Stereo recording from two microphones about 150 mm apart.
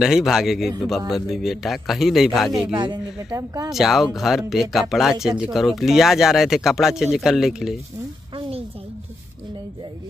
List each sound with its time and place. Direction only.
0.0 s speech: 5° right (ahead or behind)
2.7 s speech: 30° right (ahead or behind)
3.7 s speech: centre (ahead or behind)
8.4 s a sound: 40° right (ahead or behind)